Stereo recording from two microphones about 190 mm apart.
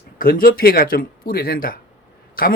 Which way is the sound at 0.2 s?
50° left (ahead or behind).